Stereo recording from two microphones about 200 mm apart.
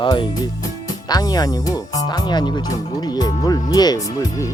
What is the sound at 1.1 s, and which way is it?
Speech, 20° left (ahead or behind).